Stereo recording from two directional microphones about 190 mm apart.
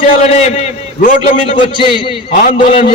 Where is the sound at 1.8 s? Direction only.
25° left (ahead or behind).